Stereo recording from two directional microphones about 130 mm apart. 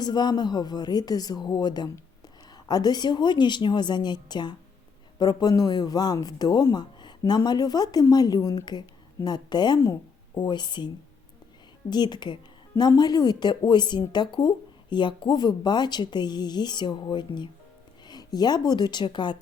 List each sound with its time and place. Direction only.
0.0 s a woman's voice: 35° left (ahead or behind)